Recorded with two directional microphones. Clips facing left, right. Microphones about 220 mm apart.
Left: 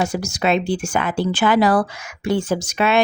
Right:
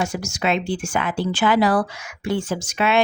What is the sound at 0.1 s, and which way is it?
Speech, 35° left (ahead or behind).